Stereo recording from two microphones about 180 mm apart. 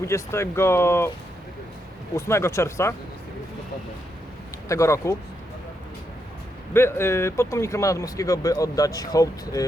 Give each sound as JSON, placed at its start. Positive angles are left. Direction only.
{"t": 0.0, "sound": "speech", "side_deg": 15}
{"t": 2.1, "sound": "speech", "side_deg": 15}
{"t": 4.7, "sound": "speech", "side_deg": 15}
{"t": 6.7, "sound": "speech", "side_deg": 15}